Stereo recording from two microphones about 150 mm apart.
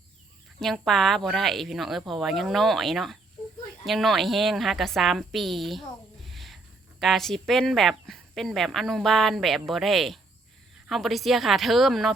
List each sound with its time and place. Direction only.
0.6 s speech: centre (ahead or behind)
6.2 s a sound: centre (ahead or behind)
7.0 s speech: centre (ahead or behind)